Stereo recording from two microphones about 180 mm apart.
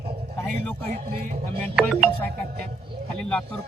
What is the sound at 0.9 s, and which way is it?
Speech, 60° right (ahead or behind).